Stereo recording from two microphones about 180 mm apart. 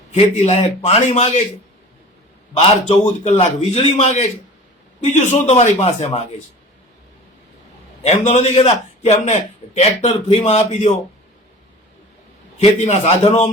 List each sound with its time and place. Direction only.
0.1 s speech: 40° left (ahead or behind)
2.6 s speech: 35° left (ahead or behind)
8.0 s speech: 40° left (ahead or behind)
12.5 s speech: 40° left (ahead or behind)